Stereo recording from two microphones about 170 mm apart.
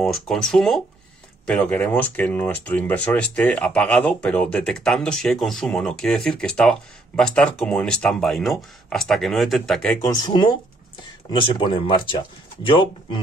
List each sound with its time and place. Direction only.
0.0 s speech: centre (ahead or behind)
10.0 s speech: 25° left (ahead or behind)
11.6 s speech: 30° left (ahead or behind)